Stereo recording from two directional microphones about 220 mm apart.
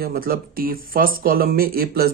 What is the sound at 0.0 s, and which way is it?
Speech, 40° right (ahead or behind).